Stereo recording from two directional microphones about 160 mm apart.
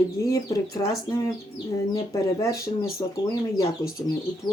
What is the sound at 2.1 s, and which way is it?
Speech, 20° left (ahead or behind).